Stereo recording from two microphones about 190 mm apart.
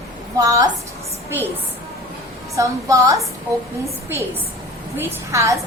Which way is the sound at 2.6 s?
15° right (ahead or behind).